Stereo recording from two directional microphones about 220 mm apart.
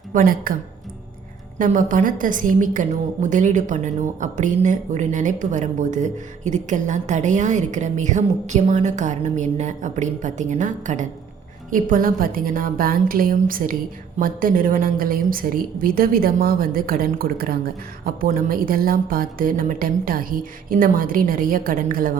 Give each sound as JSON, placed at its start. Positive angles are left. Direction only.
{"t": 0.1, "sound": "a woman's voice", "side_deg": -40}
{"t": 1.5, "sound": "a woman's voice", "side_deg": -35}